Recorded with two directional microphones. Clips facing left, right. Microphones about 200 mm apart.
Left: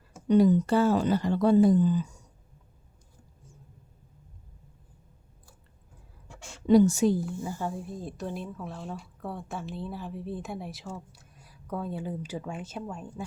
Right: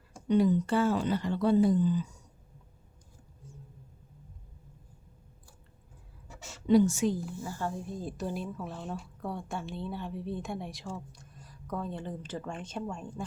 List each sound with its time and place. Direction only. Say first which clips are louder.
0.3 s speech: left 4 dB; 40° left (ahead or behind)
6.2 s a sound: left 1 dB; 5° right (ahead or behind)
6.7 s a woman's voice: left 4 dB; 40° left (ahead or behind)
7.4 s speech: left 2 dB; 15° left (ahead or behind)